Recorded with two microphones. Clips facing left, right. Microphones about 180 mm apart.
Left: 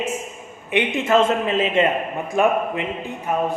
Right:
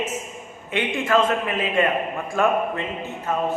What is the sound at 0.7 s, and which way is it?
A man's voice, 20° left (ahead or behind).